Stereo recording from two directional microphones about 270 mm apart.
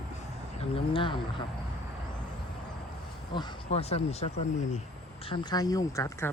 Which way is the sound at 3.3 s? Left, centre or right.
Centre.